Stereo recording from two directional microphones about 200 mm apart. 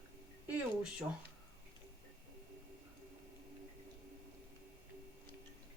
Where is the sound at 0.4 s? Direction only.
5° right (ahead or behind).